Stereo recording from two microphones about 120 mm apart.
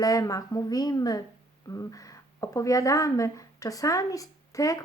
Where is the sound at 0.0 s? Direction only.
30° left (ahead or behind).